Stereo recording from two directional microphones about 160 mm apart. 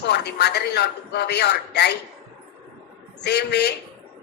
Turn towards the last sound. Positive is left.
turn(degrees=90)